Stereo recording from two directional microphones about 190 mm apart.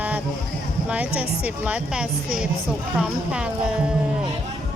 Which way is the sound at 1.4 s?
5° right (ahead or behind).